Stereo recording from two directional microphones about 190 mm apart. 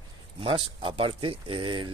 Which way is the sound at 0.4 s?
30° right (ahead or behind).